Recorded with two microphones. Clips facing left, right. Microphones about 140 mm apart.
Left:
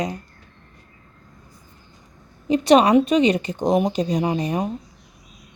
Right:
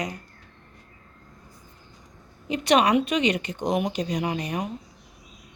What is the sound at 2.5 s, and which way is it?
Speech, 35° left (ahead or behind).